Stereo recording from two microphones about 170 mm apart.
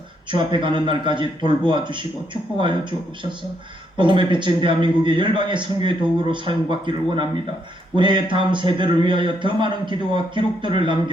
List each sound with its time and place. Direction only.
0.3 s a man's voice: 30° right (ahead or behind)
3.9 s a man's voice: 30° right (ahead or behind)